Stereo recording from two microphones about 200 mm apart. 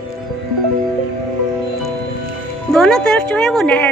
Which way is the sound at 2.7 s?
5° left (ahead or behind).